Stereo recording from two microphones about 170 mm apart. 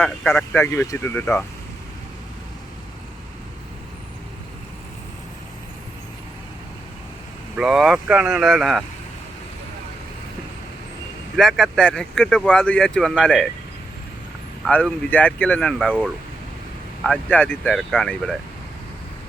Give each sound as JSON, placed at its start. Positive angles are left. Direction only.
{"t": 0.0, "sound": "speech", "side_deg": 10}
{"t": 7.5, "sound": "speech", "side_deg": -5}
{"t": 11.3, "sound": "speech", "side_deg": 0}
{"t": 14.7, "sound": "speech", "side_deg": 10}